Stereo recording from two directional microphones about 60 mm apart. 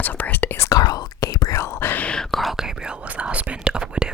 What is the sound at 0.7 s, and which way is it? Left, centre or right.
Whispering, left.